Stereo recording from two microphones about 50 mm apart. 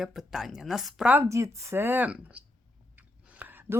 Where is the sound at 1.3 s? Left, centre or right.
Right.